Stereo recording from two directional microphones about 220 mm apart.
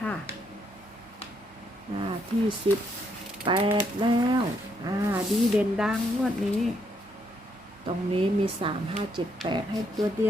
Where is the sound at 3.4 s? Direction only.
25° right (ahead or behind).